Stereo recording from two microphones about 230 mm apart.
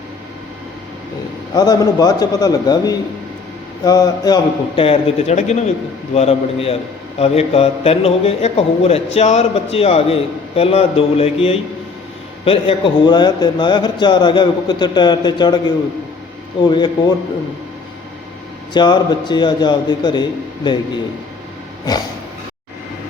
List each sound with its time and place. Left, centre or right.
1.5 s a man's voice: centre
18.7 s a man's voice: centre